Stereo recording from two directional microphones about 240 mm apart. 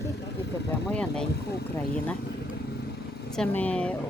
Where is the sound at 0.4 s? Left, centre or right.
Left.